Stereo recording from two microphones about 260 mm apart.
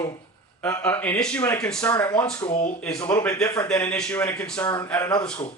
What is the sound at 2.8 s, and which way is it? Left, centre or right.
A man's voice, centre.